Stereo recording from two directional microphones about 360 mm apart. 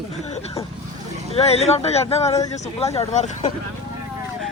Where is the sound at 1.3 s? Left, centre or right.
Centre.